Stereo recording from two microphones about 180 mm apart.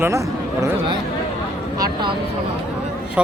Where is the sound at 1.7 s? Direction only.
25° right (ahead or behind).